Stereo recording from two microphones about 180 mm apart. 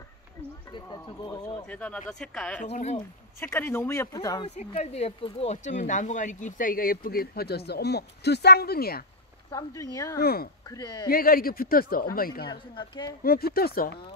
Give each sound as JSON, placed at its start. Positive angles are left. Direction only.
{"t": 0.7, "sound": "speech", "side_deg": 20}
{"t": 1.7, "sound": "speech", "side_deg": 5}
{"t": 2.6, "sound": "speech", "side_deg": 40}
{"t": 3.3, "sound": "speech", "side_deg": 10}
{"t": 4.6, "sound": "speech", "side_deg": 35}
{"t": 9.5, "sound": "speech", "side_deg": 20}
{"t": 10.1, "sound": "a man's voice", "side_deg": 60}
{"t": 10.7, "sound": "speech", "side_deg": 25}
{"t": 11.1, "sound": "a man's voice", "side_deg": 55}
{"t": 12.4, "sound": "speech", "side_deg": 25}
{"t": 13.2, "sound": "a man's voice", "side_deg": 55}